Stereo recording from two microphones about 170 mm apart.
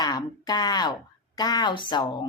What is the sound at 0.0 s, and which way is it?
A woman's voice, 25° left (ahead or behind).